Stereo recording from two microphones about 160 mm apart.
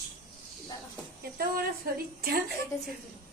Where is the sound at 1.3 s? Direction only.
70° right (ahead or behind).